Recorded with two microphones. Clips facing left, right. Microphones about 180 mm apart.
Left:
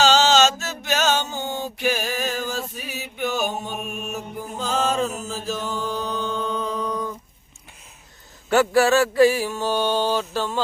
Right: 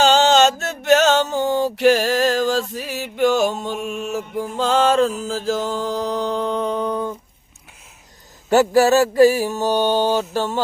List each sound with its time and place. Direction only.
0.0 s mantra: 55° right (ahead or behind); by 6.7 s 70° right (ahead or behind)
6.8 s a sound: 30° right (ahead or behind)
8.7 s mantra: 40° right (ahead or behind)
9.7 s mantra: 15° right (ahead or behind)